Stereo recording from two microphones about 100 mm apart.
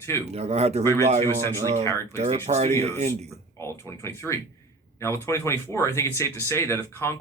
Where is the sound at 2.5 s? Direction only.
90° right.